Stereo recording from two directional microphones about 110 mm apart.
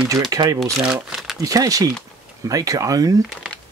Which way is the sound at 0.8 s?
5° right (ahead or behind).